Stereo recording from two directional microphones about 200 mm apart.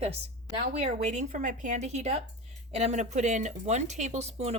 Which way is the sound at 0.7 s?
35° right (ahead or behind).